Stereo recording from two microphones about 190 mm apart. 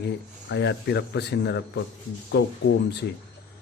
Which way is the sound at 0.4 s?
65° left (ahead or behind).